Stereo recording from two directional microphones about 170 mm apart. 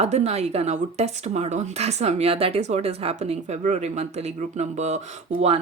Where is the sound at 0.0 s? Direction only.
40° right (ahead or behind).